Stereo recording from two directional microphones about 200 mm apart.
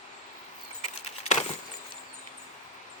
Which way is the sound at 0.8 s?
35° left (ahead or behind).